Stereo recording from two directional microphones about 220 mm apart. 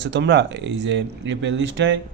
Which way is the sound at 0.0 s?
50° right (ahead or behind).